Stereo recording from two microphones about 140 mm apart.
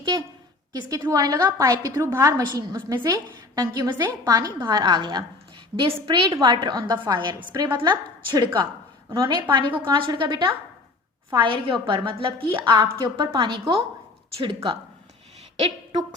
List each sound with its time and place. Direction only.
0.7 s a woman's voice: 25° right (ahead or behind)
9.0 s a woman's voice: 25° right (ahead or behind)
15.5 s a woman's voice: 50° right (ahead or behind)